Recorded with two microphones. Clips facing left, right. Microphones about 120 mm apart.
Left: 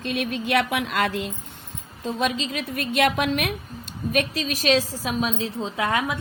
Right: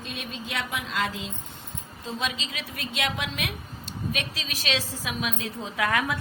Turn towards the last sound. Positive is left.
turn(degrees=20)  # may be behind; listen again after turning